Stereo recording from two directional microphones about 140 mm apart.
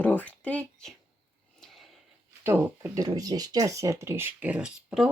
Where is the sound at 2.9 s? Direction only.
25° right (ahead or behind).